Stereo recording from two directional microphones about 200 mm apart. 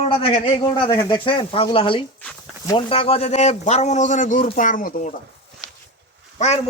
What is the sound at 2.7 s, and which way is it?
A man's voice, 30° left (ahead or behind).